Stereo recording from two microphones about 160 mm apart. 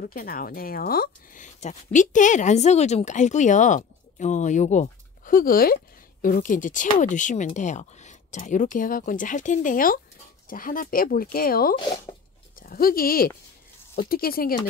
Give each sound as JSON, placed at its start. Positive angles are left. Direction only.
{"t": 0.0, "sound": "speech", "side_deg": 65}